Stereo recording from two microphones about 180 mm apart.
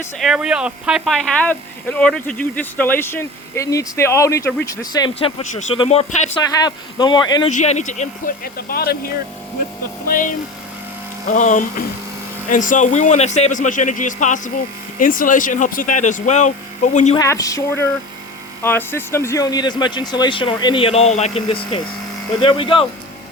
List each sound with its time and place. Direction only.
0.2 s speech: 5° right (ahead or behind); by 6.3 s 35° left (ahead or behind)
6.4 s speech: 20° left (ahead or behind)
7.5 s speech: 40° left (ahead or behind)
8.5 s speech: 60° left (ahead or behind); by 17.2 s 40° left (ahead or behind)
17.2 s speech: 20° left (ahead or behind)